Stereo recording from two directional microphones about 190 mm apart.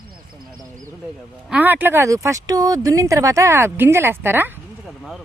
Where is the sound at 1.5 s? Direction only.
10° right (ahead or behind).